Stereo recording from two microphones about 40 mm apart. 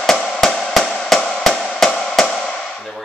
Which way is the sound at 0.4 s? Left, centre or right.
Centre.